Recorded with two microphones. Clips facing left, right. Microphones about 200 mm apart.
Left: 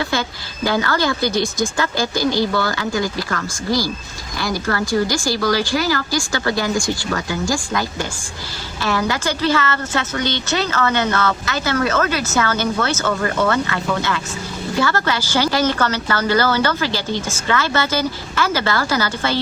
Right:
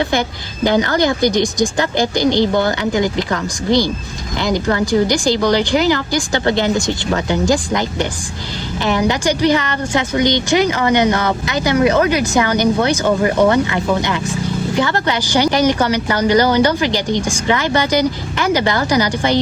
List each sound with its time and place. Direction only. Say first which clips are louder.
0.0 s a woman's voice: right 5 dB; 20° right (ahead or behind)